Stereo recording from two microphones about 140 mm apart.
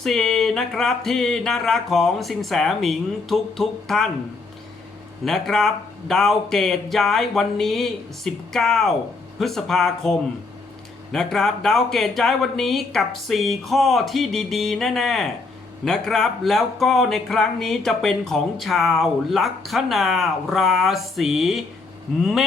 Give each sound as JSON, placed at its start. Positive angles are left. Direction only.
{"t": 0.0, "sound": "speech", "side_deg": 0}
{"t": 5.2, "sound": "speech", "side_deg": 5}